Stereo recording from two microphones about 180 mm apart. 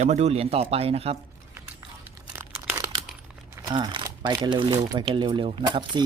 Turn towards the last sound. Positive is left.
turn(degrees=-25)  # may be behind; listen again after turning